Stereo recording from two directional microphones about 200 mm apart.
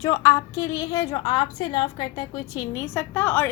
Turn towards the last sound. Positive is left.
turn(degrees=10)  # may be behind; listen again after turning